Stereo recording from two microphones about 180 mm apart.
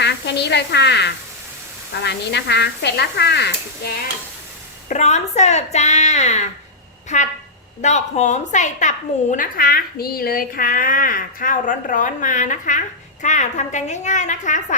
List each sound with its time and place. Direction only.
0.0 s speech: 70° left (ahead or behind)
4.9 s a woman's voice: 40° left (ahead or behind)